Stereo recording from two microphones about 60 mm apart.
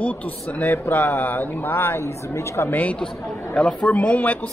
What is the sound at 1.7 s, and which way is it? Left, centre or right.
A woman's voice, left.